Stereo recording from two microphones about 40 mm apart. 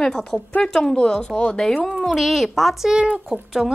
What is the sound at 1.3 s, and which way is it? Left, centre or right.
Speech, centre.